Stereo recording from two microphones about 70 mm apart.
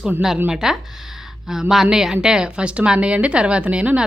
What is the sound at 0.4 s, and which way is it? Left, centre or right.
A woman's voice, centre.